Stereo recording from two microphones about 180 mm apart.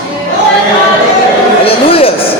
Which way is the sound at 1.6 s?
30° left (ahead or behind).